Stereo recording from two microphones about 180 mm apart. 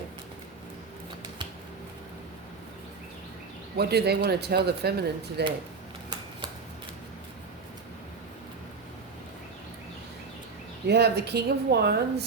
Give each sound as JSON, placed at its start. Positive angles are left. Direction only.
{"t": 3.8, "sound": "speech", "side_deg": -65}
{"t": 10.8, "sound": "speech", "side_deg": -65}